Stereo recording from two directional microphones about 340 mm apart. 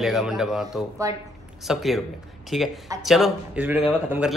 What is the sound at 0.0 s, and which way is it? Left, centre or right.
Speech, centre.